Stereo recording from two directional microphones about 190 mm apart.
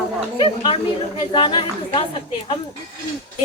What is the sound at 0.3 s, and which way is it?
Speech, 25° left (ahead or behind).